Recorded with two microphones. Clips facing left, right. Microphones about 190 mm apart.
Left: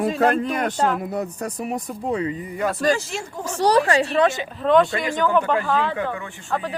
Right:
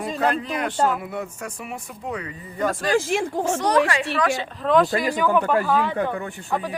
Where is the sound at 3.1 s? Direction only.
65° right (ahead or behind).